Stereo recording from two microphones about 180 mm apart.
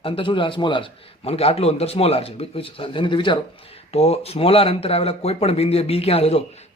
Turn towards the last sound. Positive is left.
turn(degrees=35)  # may be behind; listen again after turning